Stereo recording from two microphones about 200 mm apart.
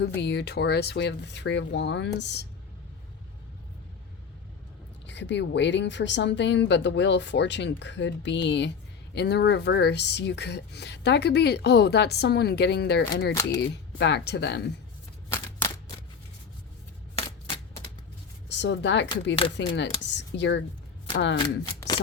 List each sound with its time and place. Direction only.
0.2 s speech: 60° left (ahead or behind)
5.0 s speech: 60° left (ahead or behind)
17.2 s typewriter: 25° left (ahead or behind)
18.4 s speech: 60° left (ahead or behind)
21.3 s speech: 20° left (ahead or behind)